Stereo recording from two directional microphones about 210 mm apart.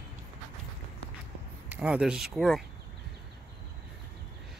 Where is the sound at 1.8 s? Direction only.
5° right (ahead or behind).